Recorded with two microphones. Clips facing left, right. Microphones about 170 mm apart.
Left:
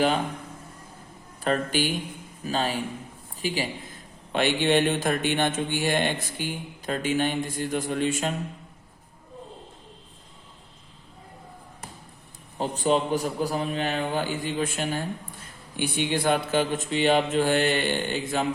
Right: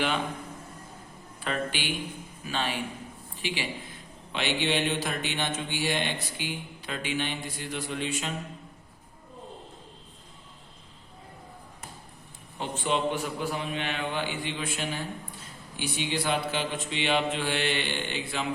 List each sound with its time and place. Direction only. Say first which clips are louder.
1.4 s a man's voice: left 7 dB; 40° left (ahead or behind)
12.5 s a man's voice: left 5 dB; 40° left (ahead or behind)